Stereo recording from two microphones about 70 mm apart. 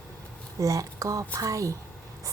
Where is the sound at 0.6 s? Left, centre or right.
Right.